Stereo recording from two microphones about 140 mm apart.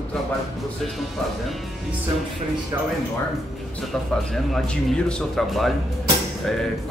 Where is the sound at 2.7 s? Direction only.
25° right (ahead or behind).